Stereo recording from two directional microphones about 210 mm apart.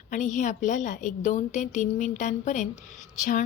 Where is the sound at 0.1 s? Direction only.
35° left (ahead or behind).